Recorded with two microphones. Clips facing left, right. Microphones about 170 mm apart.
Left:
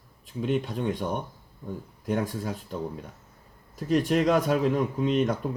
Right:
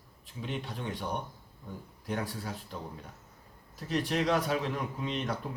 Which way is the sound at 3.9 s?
45° left (ahead or behind).